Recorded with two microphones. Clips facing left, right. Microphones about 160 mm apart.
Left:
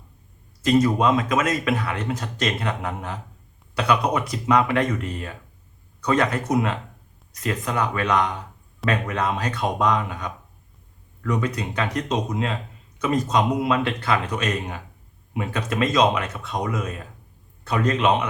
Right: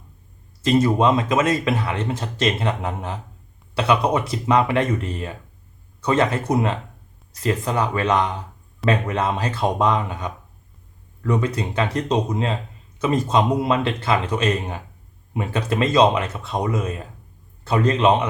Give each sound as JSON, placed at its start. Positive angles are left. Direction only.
{"t": 0.6, "sound": "speech", "side_deg": -25}